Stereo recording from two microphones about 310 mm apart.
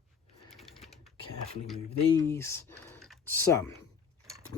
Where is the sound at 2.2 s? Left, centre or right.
Centre.